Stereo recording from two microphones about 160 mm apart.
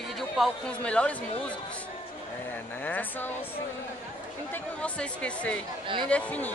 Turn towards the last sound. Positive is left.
turn(degrees=10)  # may be behind; listen again after turning